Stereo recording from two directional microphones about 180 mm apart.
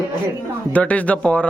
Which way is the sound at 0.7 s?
10° left (ahead or behind).